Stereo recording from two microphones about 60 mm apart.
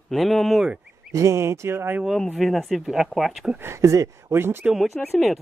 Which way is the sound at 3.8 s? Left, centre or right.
Right.